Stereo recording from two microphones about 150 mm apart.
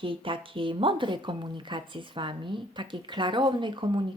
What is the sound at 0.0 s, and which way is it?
Speech, 35° right (ahead or behind).